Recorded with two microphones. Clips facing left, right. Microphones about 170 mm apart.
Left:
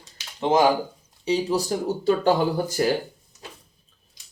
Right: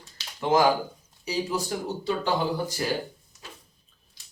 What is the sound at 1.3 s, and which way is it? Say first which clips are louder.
Speech: left 6 dB; 40° left (ahead or behind).